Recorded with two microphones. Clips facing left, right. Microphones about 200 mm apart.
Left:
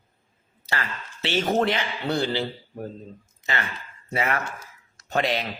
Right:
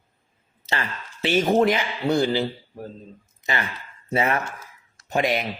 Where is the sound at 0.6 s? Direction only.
20° right (ahead or behind).